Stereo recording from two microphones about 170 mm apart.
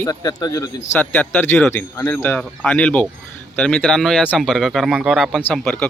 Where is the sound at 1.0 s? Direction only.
10° left (ahead or behind).